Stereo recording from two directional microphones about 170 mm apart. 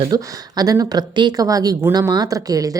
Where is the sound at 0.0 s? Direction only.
25° right (ahead or behind).